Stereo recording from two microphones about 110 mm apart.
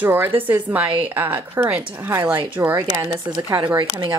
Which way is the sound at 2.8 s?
35° right (ahead or behind).